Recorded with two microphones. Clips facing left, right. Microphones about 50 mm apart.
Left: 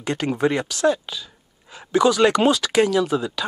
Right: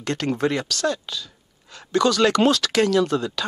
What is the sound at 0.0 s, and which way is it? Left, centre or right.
Speech, centre.